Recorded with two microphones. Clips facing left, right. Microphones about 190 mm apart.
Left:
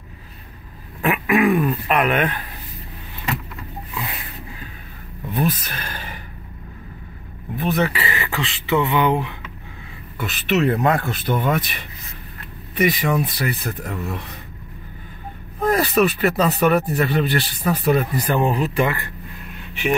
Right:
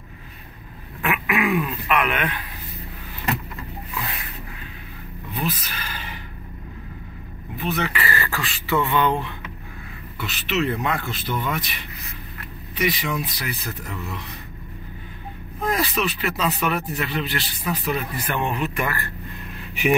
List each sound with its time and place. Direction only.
1.0 s a sound: 40° left (ahead or behind)
5.3 s speech: 50° left (ahead or behind)
7.5 s speech: 45° left (ahead or behind)
7.9 s speech: 25° left (ahead or behind)
10.1 s speech: 50° left (ahead or behind)
15.7 s speech: 50° left (ahead or behind); by 18.9 s 35° left (ahead or behind)
18.9 s speech: 20° left (ahead or behind)